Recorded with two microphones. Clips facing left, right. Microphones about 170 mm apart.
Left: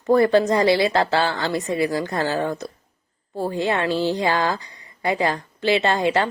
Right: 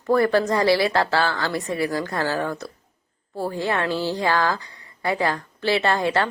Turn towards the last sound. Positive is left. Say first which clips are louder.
# left 1 dB
turn(degrees=15)  # may be behind; listen again after turning